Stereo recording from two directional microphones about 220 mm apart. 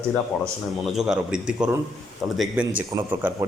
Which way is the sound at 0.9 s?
5° right (ahead or behind).